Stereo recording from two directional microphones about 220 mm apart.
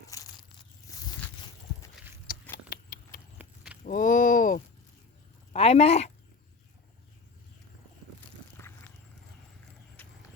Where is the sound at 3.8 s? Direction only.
35° left (ahead or behind).